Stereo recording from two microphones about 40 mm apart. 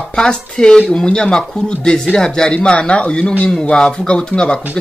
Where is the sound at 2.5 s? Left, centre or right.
Left.